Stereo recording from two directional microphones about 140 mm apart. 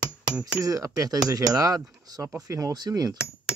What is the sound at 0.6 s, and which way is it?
Speech, 25° right (ahead or behind).